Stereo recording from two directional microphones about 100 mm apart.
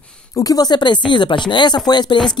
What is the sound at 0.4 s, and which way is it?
Speech, 40° left (ahead or behind).